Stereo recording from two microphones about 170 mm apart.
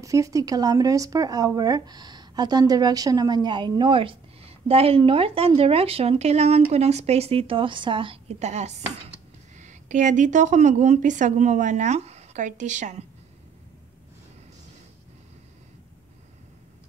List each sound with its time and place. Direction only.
0.0 s a woman's voice: 20° right (ahead or behind); by 13.0 s 45° right (ahead or behind)